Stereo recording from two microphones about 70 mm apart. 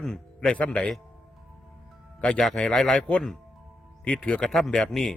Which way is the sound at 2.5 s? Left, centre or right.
Centre.